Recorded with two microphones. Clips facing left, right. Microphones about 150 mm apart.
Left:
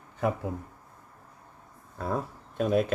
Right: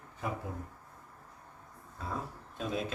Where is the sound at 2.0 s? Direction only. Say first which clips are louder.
Left 8 dB; 65° left (ahead or behind).